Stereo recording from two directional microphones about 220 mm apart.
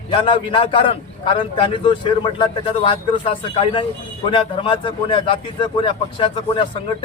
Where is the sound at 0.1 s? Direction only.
25° left (ahead or behind).